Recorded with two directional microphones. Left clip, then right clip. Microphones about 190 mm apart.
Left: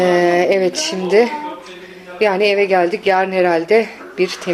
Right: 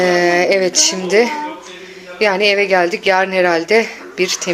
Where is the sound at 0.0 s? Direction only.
10° left (ahead or behind).